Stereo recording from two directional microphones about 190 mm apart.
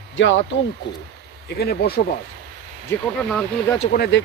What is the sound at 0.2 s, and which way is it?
Speech, 85° left.